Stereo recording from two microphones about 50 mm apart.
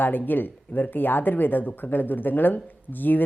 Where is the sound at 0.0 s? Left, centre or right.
Left.